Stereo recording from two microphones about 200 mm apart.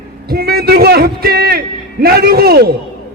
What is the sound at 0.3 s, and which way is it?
A man's voice, 50° right (ahead or behind).